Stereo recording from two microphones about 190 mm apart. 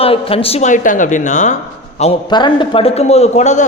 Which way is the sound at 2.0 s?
25° left (ahead or behind).